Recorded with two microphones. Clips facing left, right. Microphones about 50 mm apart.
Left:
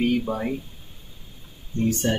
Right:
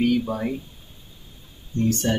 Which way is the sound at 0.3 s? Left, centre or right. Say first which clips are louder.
Even; centre.